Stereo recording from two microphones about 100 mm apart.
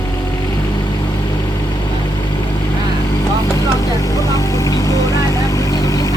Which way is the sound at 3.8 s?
35° left (ahead or behind).